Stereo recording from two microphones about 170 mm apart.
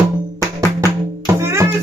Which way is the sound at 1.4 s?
15° right (ahead or behind).